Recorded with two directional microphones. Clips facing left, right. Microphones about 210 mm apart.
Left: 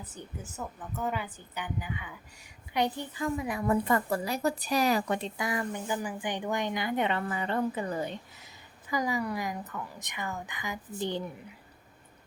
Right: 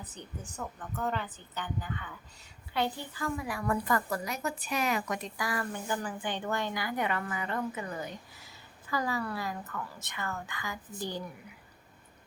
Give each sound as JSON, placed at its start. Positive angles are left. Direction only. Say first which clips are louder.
{"t": 0.5, "sound": "a woman's voice", "louder": "even", "side_deg": 10}
{"t": 8.9, "sound": "a woman's voice", "louder": "left 2 dB", "side_deg": 15}